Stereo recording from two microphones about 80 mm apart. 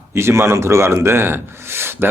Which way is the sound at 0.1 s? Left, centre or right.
Right.